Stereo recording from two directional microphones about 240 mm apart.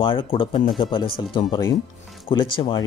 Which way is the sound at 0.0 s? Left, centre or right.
Left.